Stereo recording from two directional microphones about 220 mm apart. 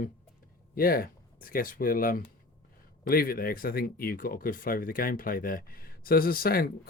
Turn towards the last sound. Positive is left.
turn(degrees=40)  # may be behind; listen again after turning